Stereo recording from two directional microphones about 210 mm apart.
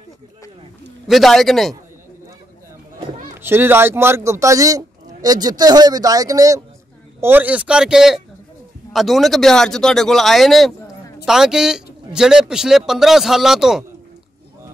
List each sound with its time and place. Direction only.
1.0 s a man's voice: centre (ahead or behind)
3.3 s a man's voice: 10° right (ahead or behind)